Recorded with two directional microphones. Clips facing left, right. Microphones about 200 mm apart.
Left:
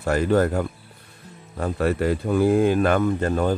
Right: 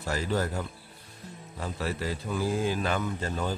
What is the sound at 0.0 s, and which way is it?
Speech, 60° left (ahead or behind).